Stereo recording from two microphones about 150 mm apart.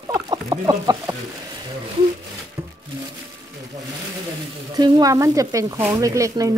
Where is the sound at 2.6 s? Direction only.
20° right (ahead or behind).